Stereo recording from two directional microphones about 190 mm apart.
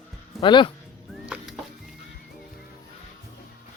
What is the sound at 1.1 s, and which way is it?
Music, centre (ahead or behind).